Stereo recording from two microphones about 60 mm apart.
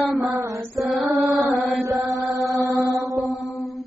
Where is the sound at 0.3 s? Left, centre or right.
Right.